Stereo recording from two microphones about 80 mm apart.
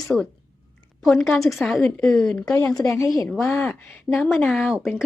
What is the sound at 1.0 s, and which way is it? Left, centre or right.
A woman's voice, centre.